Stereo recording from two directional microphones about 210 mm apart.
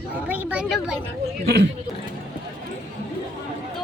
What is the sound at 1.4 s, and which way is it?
Speech, 50° right (ahead or behind).